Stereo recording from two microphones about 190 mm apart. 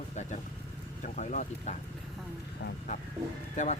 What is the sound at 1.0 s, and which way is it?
Speech, 40° left (ahead or behind).